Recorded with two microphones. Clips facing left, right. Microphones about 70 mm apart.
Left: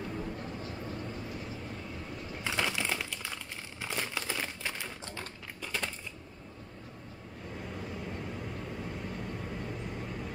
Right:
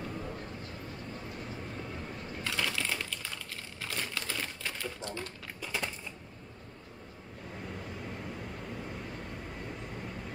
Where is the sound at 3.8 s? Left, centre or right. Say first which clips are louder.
Left 2 dB; centre.